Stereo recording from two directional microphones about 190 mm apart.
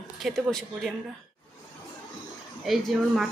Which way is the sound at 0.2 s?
Centre (ahead or behind).